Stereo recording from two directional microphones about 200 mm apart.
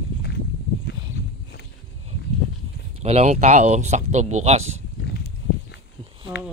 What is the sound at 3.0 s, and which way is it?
Speech, 35° right (ahead or behind).